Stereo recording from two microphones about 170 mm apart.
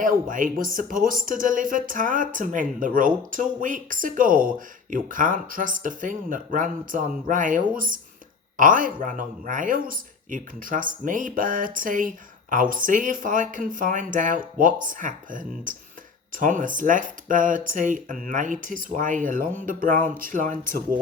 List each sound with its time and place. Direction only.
0.0 s speech: 55° right (ahead or behind)